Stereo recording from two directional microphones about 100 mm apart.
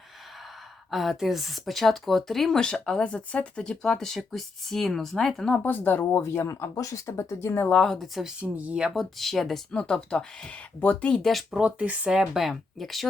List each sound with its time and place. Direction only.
0.9 s speech: centre (ahead or behind)
5.6 s speech: 20° left (ahead or behind)
7.7 s speech: 5° left (ahead or behind); by 9.0 s 10° right (ahead or behind)
9.1 s speech: centre (ahead or behind)
11.6 s speech: 10° right (ahead or behind)